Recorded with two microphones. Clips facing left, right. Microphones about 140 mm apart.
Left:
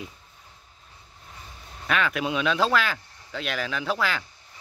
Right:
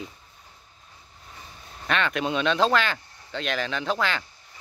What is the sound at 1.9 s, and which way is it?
Speech, 5° left (ahead or behind).